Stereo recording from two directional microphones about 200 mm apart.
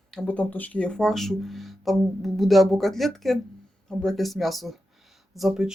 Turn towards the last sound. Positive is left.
turn(degrees=0)  # may be behind; listen again after turning